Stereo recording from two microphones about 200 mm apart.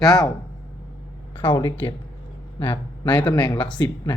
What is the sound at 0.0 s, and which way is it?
Speech, centre (ahead or behind).